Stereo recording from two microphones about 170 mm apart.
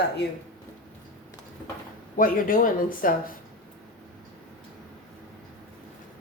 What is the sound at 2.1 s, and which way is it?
A woman's voice, 55° left (ahead or behind).